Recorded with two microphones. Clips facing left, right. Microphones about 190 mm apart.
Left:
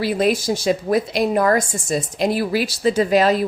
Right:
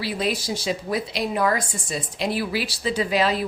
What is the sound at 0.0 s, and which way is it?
A woman's voice, 50° left (ahead or behind).